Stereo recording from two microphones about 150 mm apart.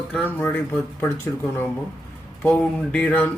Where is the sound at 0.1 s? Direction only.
10° left (ahead or behind).